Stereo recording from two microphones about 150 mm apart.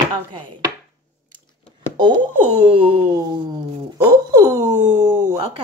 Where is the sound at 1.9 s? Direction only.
30° right (ahead or behind).